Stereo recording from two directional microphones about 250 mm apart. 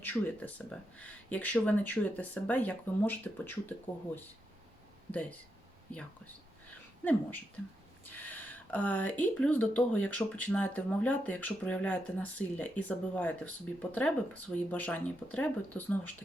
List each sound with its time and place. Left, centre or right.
0.0 s speech: centre
5.9 s speech: centre